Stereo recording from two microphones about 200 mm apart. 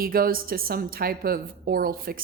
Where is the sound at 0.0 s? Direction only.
45° right (ahead or behind).